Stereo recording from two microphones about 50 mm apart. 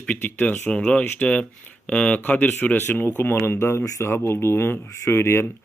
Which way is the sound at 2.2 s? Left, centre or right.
Left.